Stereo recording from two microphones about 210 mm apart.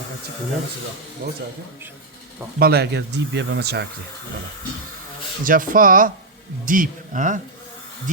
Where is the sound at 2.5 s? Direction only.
50° right (ahead or behind).